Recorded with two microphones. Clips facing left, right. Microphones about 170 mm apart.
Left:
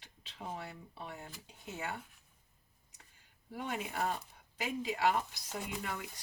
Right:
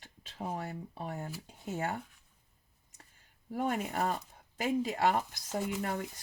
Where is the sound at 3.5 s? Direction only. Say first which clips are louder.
Right 6 dB; 45° right (ahead or behind).